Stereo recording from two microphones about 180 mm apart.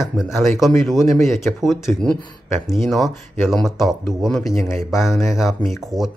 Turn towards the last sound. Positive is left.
turn(degrees=0)  # may be behind; listen again after turning